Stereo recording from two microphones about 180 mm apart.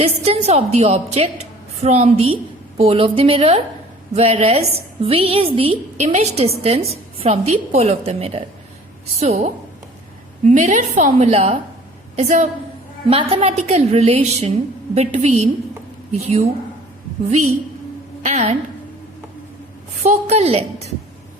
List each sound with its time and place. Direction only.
0.0 s a woman's voice: 35° right (ahead or behind)
10.4 s a woman's voice: 40° right (ahead or behind)
19.9 s a woman's voice: 40° right (ahead or behind)